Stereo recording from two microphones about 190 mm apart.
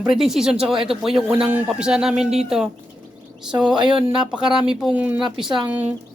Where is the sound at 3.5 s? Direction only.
5° right (ahead or behind).